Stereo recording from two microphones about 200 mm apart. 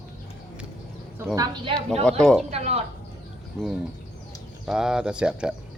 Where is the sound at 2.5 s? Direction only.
30° right (ahead or behind).